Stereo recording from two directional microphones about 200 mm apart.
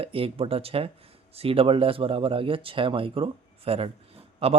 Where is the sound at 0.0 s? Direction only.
30° right (ahead or behind).